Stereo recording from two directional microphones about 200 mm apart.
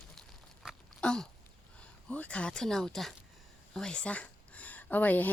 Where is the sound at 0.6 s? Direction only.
Centre (ahead or behind).